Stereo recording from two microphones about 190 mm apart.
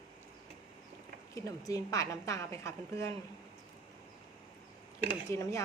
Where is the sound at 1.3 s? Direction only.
20° left (ahead or behind).